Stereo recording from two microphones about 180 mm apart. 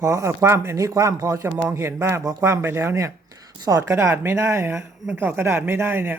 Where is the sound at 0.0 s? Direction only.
15° right (ahead or behind).